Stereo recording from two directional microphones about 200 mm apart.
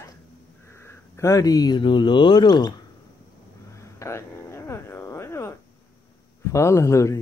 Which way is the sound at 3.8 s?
15° left (ahead or behind).